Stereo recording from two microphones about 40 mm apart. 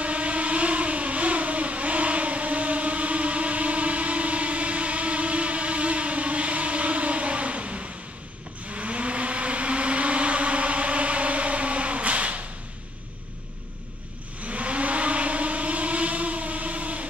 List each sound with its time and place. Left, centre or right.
0.0 s vehicle: right
14.4 s vehicle: right